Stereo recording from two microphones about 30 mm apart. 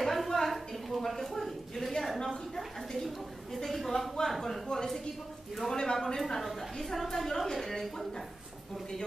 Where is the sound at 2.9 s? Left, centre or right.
Centre.